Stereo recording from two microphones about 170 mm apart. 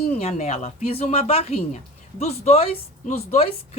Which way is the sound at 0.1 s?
40° left (ahead or behind).